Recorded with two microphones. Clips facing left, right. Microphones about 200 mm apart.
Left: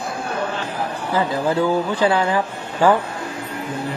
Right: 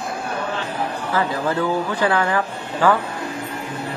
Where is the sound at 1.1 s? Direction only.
20° left (ahead or behind).